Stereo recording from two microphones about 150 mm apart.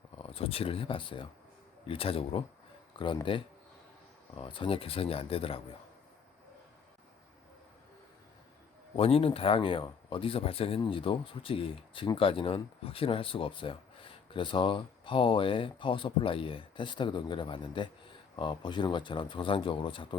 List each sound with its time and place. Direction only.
0.2 s speech: 40° left (ahead or behind)
9.0 s speech: 40° left (ahead or behind)